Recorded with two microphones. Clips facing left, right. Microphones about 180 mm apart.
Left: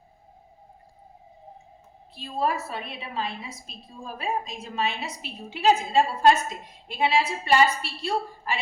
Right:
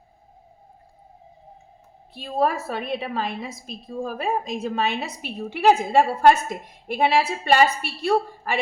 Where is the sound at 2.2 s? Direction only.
60° right (ahead or behind).